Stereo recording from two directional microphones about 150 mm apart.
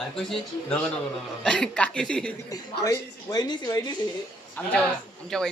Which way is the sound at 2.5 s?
25° left (ahead or behind).